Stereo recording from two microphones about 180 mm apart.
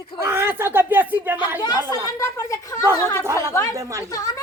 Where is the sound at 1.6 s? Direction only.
20° left (ahead or behind).